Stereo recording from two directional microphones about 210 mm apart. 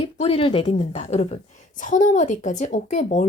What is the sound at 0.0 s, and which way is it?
A woman's voice, 30° left (ahead or behind).